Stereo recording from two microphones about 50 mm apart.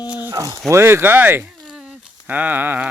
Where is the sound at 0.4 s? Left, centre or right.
Right.